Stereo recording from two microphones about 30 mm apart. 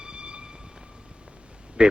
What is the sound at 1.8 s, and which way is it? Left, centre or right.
Speech, right.